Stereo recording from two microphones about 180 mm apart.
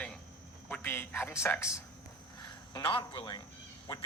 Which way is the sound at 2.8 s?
25° left (ahead or behind).